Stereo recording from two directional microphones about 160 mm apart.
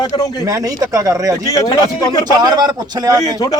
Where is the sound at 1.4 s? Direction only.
20° left (ahead or behind).